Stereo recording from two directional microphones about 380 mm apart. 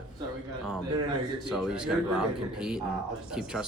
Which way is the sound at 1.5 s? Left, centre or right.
Centre.